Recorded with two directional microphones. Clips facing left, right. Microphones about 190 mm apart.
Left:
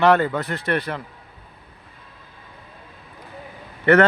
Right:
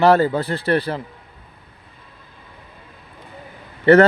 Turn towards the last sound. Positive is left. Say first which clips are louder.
# right 4 dB
turn(degrees=-30)  # may be behind; listen again after turning